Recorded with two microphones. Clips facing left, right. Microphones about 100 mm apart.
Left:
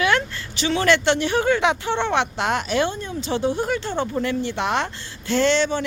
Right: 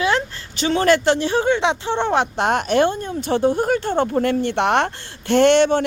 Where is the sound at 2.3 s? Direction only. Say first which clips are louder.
Right 4 dB; 50° right (ahead or behind).